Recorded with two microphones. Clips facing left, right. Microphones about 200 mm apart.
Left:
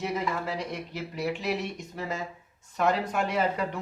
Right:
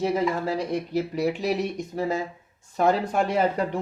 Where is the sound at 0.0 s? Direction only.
30° right (ahead or behind).